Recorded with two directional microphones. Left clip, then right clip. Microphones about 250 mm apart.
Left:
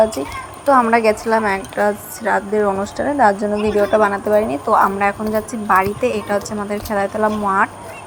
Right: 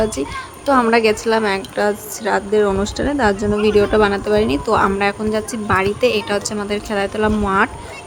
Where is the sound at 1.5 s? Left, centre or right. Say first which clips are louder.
Left 1 dB; centre.